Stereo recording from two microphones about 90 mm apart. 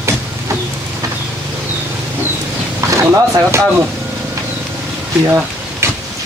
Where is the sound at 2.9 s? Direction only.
30° right (ahead or behind).